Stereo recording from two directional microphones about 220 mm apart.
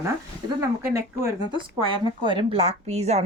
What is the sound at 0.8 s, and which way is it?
A woman's voice, 10° right (ahead or behind).